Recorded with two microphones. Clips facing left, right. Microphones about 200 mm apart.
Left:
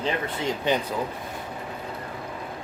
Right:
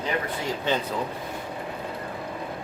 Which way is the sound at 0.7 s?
20° left (ahead or behind).